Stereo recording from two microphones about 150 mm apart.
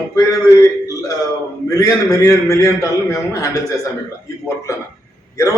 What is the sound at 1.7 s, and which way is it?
A man's voice, 20° left (ahead or behind).